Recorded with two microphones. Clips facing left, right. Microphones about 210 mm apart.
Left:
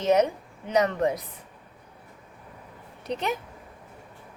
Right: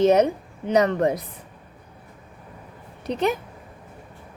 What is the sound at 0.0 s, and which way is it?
Speech, 30° right (ahead or behind).